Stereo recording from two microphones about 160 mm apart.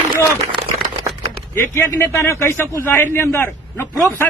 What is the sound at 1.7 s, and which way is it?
A man's voice, 15° left (ahead or behind).